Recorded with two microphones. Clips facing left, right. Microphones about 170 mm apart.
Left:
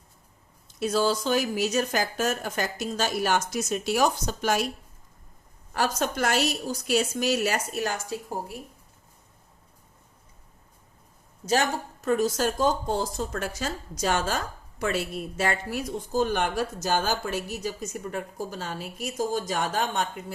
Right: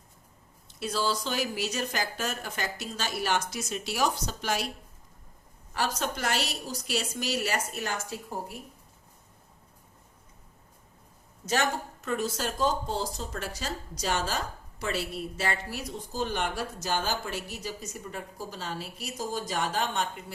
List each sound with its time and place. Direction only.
0.7 s a woman's voice: 45° left (ahead or behind)
5.7 s a woman's voice: 50° left (ahead or behind)
12.0 s a woman's voice: 40° left (ahead or behind)